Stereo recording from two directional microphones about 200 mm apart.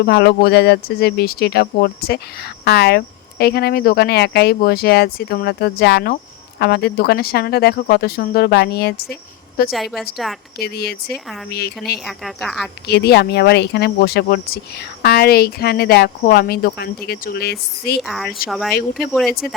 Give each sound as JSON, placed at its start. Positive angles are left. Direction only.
{"t": 0.0, "sound": "speech", "side_deg": 55}
{"t": 9.6, "sound": "speech", "side_deg": 0}
{"t": 10.6, "sound": "speech", "side_deg": 50}
{"t": 12.0, "sound": "speech", "side_deg": 0}
{"t": 12.9, "sound": "speech", "side_deg": 55}
{"t": 18.0, "sound": "speech", "side_deg": 0}